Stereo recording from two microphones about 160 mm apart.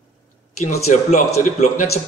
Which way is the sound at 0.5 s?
50° left (ahead or behind).